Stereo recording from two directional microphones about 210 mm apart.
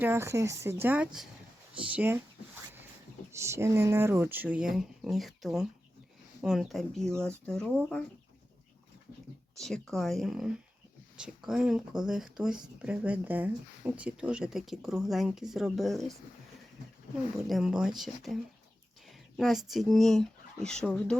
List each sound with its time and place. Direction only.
0.0 s speech: 10° right (ahead or behind)
3.3 s speech: 15° right (ahead or behind); by 8.0 s 5° left (ahead or behind)
9.6 s speech: centre (ahead or behind)
17.5 s speech: 5° right (ahead or behind)